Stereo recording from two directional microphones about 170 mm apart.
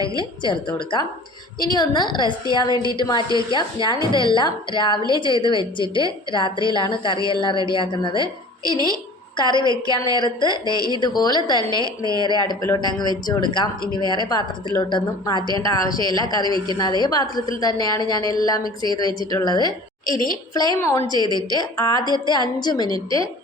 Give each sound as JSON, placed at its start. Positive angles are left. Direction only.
{"t": 0.2, "sound": "a woman's voice", "side_deg": 30}
{"t": 9.4, "sound": "a woman's voice", "side_deg": 25}
{"t": 11.7, "sound": "a woman's voice", "side_deg": -20}
{"t": 12.2, "sound": "a woman's voice", "side_deg": 25}
{"t": 23.0, "sound": "a woman's voice", "side_deg": -30}